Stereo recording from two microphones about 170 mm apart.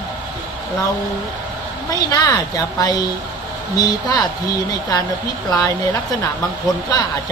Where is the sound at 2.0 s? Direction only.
25° left (ahead or behind).